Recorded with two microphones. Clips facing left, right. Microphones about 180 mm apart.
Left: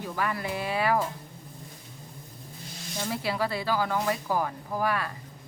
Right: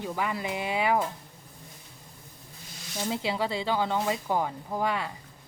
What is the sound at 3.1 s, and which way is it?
Speech, 20° right (ahead or behind).